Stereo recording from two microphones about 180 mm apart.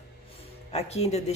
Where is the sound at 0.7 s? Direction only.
35° left (ahead or behind).